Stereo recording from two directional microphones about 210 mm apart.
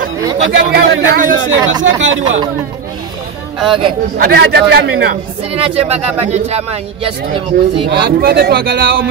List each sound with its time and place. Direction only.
0.4 s speech: 55° right (ahead or behind)
3.5 s speech: centre (ahead or behind)
4.2 s a man's voice: 50° right (ahead or behind)
5.5 s speech: 30° right (ahead or behind)
7.9 s a man's voice: 50° right (ahead or behind)